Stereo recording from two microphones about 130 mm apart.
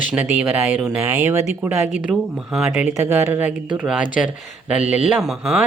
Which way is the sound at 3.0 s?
20° right (ahead or behind).